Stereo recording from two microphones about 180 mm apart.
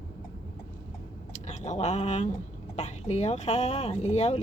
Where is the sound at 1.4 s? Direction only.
40° left (ahead or behind).